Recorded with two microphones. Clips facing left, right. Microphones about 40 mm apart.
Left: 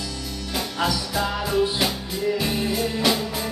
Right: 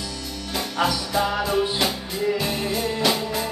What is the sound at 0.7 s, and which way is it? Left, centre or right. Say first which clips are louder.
Music: right 3 dB; centre.